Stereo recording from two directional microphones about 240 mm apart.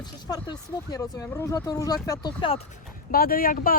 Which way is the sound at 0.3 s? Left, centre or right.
Centre.